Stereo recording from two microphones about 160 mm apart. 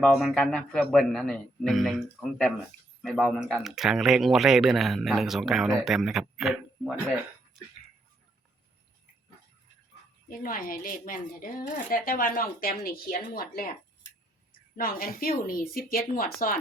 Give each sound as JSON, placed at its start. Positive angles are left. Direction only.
{"t": 0.0, "sound": "speech", "side_deg": 0}
{"t": 10.2, "sound": "speech", "side_deg": 60}
{"t": 14.8, "sound": "speech", "side_deg": 65}